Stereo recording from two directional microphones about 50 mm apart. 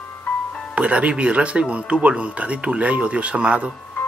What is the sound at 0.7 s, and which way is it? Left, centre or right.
Speech, right.